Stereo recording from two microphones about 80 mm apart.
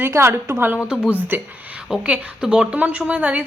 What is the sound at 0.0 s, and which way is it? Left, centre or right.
Speech, right.